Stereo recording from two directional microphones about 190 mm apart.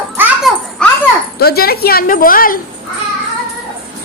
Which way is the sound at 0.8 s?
5° left (ahead or behind).